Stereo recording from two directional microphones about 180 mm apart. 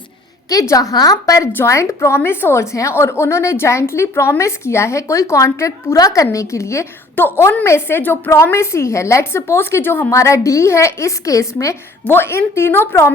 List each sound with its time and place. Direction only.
0.5 s a woman's voice: 20° left (ahead or behind)